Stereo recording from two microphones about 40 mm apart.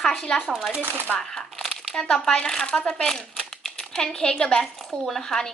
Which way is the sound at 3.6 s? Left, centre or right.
Centre.